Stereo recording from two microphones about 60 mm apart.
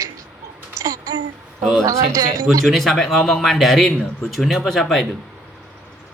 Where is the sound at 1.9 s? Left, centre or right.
Right.